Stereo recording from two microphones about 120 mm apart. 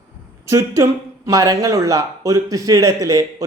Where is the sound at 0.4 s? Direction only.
25° right (ahead or behind).